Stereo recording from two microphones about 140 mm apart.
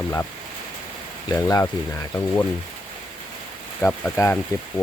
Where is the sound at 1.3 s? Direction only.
25° left (ahead or behind).